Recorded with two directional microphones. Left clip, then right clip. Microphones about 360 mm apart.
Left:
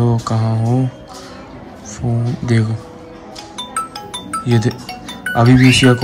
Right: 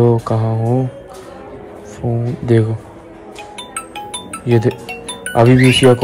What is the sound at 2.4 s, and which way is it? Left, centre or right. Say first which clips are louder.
Speech: right 6 dB; centre.